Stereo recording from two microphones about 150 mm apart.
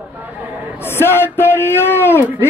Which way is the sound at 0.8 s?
15° left (ahead or behind).